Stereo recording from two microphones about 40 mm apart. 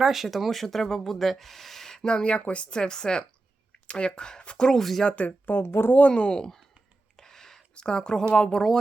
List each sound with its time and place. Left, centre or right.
0.0 s speech: centre
2.1 s speech: left; by 5.0 s centre
5.0 s speech: left
5.5 s speech: left
5.9 s speech: left
6.4 s speech: centre
7.2 s a sound: centre
7.8 s speech: left